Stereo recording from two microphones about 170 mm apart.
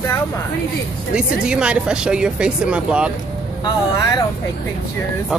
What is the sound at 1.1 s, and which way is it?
Speech, 5° right (ahead or behind).